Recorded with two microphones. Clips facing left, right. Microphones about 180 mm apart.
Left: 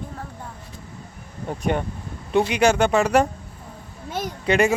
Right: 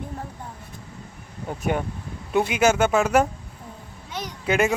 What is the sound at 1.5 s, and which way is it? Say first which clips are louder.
Speech: left 1 dB; 5° right (ahead or behind).